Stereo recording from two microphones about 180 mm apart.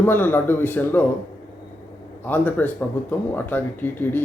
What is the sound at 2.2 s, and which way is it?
Speech, 10° left (ahead or behind).